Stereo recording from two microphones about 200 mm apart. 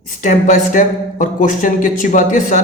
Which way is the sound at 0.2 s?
40° left (ahead or behind).